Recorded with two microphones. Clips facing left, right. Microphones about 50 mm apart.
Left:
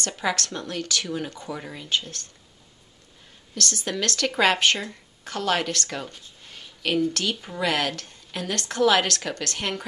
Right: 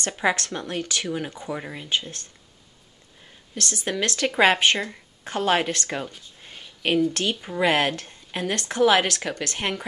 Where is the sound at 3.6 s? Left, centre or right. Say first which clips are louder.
Right 1 dB; centre.